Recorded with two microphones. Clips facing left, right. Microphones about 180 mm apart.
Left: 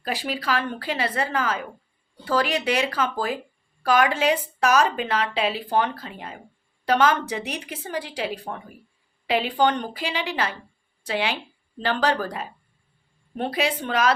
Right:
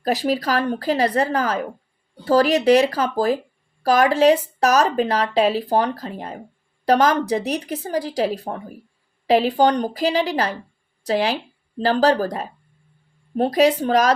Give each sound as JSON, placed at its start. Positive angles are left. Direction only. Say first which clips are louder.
{"t": 0.0, "sound": "speech", "louder": "right 8 dB", "side_deg": -40}